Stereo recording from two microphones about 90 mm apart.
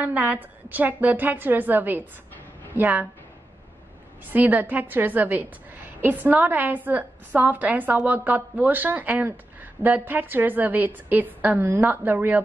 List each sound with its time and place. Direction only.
0.0 s speech: 20° right (ahead or behind)
4.3 s speech: 20° right (ahead or behind)